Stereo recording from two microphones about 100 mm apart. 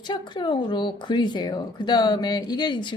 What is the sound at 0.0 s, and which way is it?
Speech, 50° left (ahead or behind).